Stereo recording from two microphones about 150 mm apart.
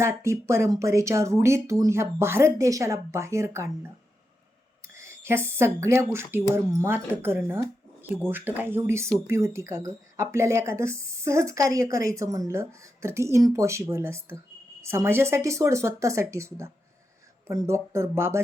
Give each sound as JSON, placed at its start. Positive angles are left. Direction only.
{"t": 0.0, "sound": "speech", "side_deg": -20}
{"t": 4.9, "sound": "speech", "side_deg": -15}